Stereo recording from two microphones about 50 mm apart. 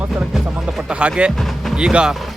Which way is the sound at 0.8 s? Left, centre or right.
Centre.